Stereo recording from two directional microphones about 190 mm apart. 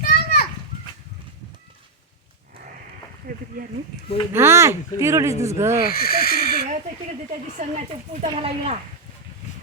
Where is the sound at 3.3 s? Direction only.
50° right (ahead or behind).